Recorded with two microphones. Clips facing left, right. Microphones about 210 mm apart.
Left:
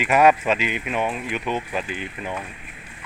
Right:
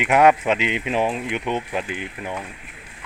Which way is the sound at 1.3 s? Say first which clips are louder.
Right 1 dB; 20° right (ahead or behind).